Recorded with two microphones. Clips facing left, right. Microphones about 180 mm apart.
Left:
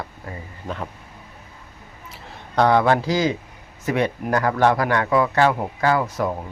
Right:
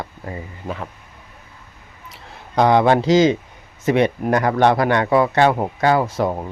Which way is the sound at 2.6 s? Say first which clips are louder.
Right 3 dB; 20° right (ahead or behind).